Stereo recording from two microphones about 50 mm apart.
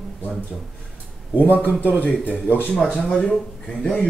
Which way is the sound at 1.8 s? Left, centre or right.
Left.